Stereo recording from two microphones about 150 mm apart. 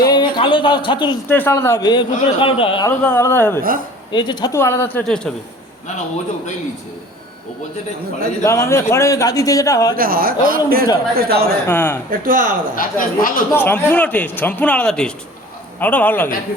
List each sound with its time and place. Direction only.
0.0 s a sound: 30° left (ahead or behind)
1.3 s a man's voice: 15° left (ahead or behind)
1.9 s a man's voice: 30° left (ahead or behind)
3.0 s a man's voice: 15° left (ahead or behind)
3.6 s a man's voice: 70° right (ahead or behind)
4.1 s speech: 30° left (ahead or behind)
4.5 s a man's voice: 15° left (ahead or behind)
8.4 s speech: 20° left (ahead or behind)
9.9 s a man's voice: 75° right (ahead or behind)
11.1 s speech: 90° right
11.7 s a man's voice: 15° left (ahead or behind)
12.1 s a man's voice: 65° right (ahead or behind)
12.7 s speech: 65° left (ahead or behind)
13.5 s a man's voice: 15° left (ahead or behind)